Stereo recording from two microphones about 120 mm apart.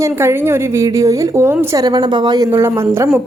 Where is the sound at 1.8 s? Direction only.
35° right (ahead or behind).